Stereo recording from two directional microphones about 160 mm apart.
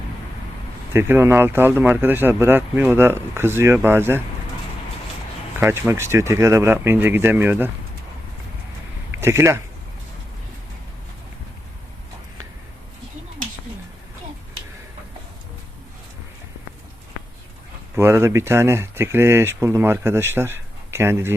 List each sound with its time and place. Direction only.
0.9 s speech: 15° right (ahead or behind)
5.5 s speech: 10° right (ahead or behind)
9.1 s speech: 15° right (ahead or behind)
17.9 s speech: 15° right (ahead or behind)